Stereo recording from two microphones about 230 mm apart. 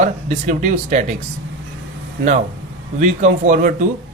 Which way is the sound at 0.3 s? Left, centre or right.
Right.